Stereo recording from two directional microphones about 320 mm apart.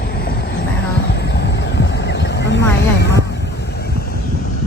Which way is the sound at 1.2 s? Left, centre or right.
Left.